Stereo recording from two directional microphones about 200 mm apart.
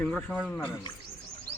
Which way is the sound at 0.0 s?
5° left (ahead or behind).